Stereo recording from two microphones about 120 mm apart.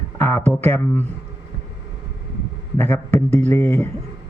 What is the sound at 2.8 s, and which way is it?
Speech, 20° left (ahead or behind).